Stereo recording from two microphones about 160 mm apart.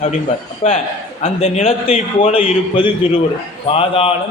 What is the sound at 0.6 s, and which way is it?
A man's voice, 35° left (ahead or behind).